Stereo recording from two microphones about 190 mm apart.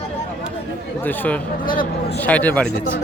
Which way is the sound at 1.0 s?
10° left (ahead or behind).